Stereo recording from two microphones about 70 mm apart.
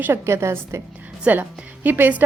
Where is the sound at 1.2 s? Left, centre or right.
Right.